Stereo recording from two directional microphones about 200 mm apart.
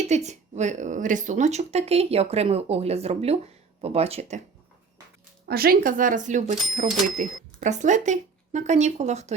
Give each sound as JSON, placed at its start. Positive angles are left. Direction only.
{"t": 0.1, "sound": "speech", "side_deg": -35}
{"t": 5.5, "sound": "speech", "side_deg": -50}